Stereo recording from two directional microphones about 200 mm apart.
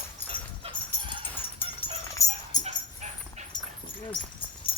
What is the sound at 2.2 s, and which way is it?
Dog, 15° left (ahead or behind).